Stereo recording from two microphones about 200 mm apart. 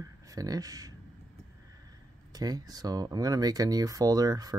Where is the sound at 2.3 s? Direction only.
20° right (ahead or behind).